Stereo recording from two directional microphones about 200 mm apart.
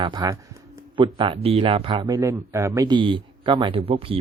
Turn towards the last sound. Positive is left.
turn(degrees=-30)  # may be behind; listen again after turning